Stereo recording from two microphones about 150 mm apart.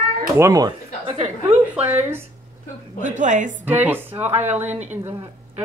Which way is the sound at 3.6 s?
10° right (ahead or behind).